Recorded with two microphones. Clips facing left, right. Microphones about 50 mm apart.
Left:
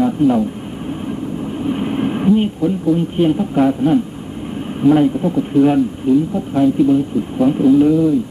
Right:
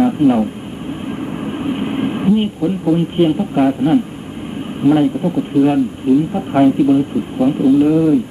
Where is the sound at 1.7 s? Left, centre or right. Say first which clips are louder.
Left 1 dB; centre.